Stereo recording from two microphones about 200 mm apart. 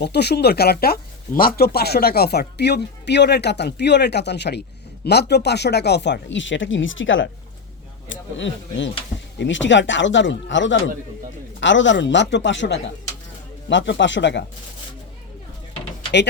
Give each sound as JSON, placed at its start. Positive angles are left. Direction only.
{"t": 0.0, "sound": "speech", "side_deg": 55}